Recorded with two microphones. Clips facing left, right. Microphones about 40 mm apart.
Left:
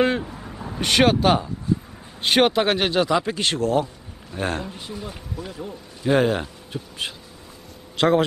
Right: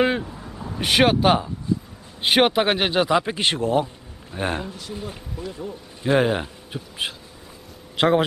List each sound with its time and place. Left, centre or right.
0.3 s vehicle: centre
0.7 s a man's voice: centre
5.7 s a man's voice: centre